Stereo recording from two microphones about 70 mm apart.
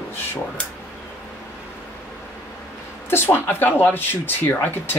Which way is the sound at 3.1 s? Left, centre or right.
Left.